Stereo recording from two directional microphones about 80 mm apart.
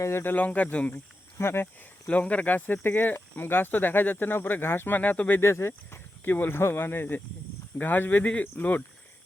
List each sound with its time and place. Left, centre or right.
0.0 s speech: left
1.4 s speech: left
2.0 s speech: centre
5.4 s speech: left